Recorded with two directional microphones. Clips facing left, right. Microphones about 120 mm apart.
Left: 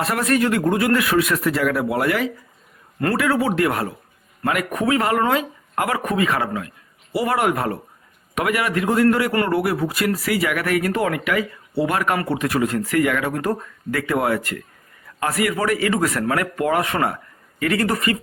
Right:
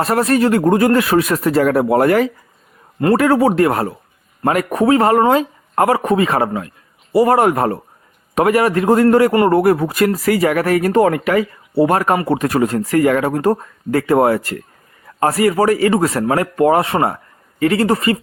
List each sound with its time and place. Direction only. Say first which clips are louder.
0.0 s speech: right 5 dB; 35° right (ahead or behind)